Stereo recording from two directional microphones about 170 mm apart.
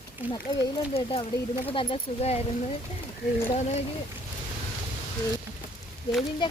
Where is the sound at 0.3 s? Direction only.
30° left (ahead or behind).